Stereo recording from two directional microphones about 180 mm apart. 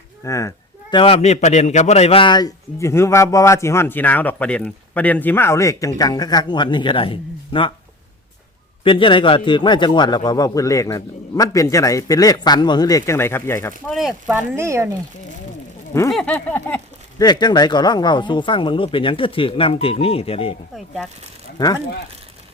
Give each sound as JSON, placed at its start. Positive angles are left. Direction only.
{"t": 0.3, "sound": "a man's voice", "side_deg": 15}
{"t": 8.8, "sound": "a man's voice", "side_deg": 30}
{"t": 13.9, "sound": "speech", "side_deg": -5}
{"t": 16.1, "sound": "a sound", "side_deg": 5}
{"t": 17.2, "sound": "a man's voice", "side_deg": 25}
{"t": 20.7, "sound": "speech", "side_deg": 0}
{"t": 21.6, "sound": "a man's voice", "side_deg": 20}